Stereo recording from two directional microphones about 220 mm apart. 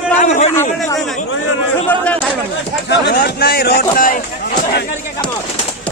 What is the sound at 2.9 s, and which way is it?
Speech, 50° left (ahead or behind).